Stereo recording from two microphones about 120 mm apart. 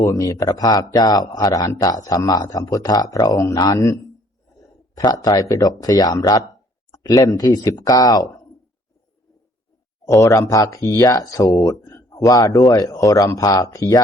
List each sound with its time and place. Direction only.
0.0 s a man's voice: 25° left (ahead or behind)
10.2 s speech: 25° left (ahead or behind)